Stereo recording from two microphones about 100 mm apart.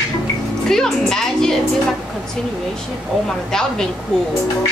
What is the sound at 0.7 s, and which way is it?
Music, 5° left (ahead or behind).